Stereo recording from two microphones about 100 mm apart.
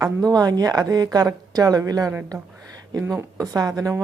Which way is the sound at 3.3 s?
35° right (ahead or behind).